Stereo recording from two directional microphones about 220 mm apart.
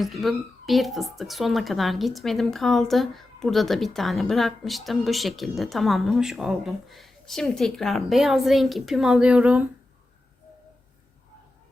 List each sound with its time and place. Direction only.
0.0 s a woman's voice: centre (ahead or behind)